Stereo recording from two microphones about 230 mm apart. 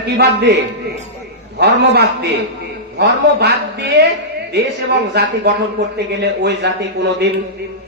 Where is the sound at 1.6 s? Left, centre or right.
Right.